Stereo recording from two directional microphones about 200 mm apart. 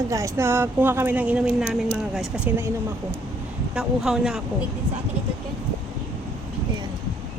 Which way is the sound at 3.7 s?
5° right (ahead or behind).